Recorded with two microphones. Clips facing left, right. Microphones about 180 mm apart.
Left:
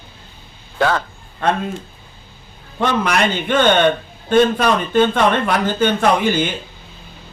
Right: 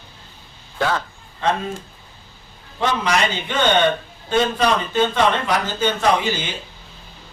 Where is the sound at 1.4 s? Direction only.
55° left (ahead or behind).